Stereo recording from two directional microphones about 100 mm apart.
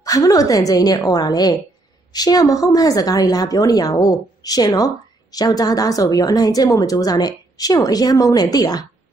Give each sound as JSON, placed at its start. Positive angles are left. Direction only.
{"t": 0.0, "sound": "a woman's voice", "side_deg": 35}